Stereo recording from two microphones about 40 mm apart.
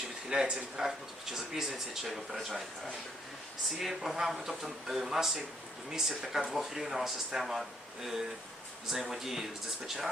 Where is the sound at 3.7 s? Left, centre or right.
Centre.